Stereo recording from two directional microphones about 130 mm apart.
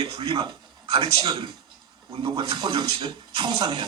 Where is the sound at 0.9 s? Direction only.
35° right (ahead or behind).